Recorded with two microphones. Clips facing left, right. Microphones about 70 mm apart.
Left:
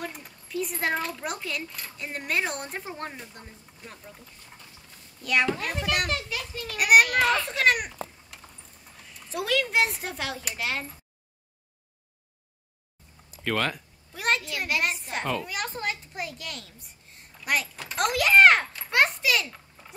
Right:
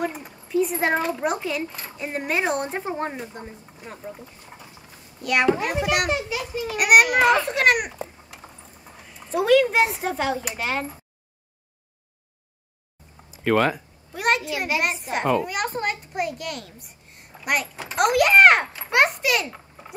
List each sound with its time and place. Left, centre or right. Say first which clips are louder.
0.5 s speech: right 7 dB; centre
0.9 s a child's voice: right 6 dB; centre
1.2 s speech: right 8 dB; centre
1.7 s a child's voice: right 6 dB; centre
5.2 s a child's voice: right 5 dB; centre
8.9 s a child's voice: right 8 dB; centre
13.3 s a child's voice: right 8 dB; centre
19.4 s a sound: right 6 dB; right